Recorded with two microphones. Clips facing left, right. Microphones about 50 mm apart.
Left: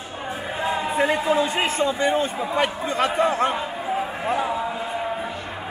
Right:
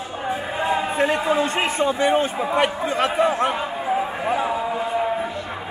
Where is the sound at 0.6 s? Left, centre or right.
Right.